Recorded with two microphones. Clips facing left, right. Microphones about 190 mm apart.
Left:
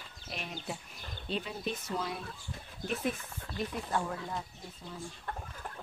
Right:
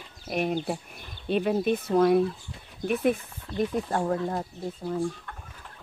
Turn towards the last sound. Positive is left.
turn(degrees=-50)  # may be behind; listen again after turning